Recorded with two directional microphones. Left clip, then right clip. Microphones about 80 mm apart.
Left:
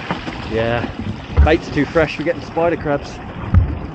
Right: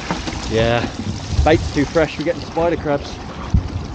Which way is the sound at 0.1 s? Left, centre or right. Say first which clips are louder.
Right 2 dB; right.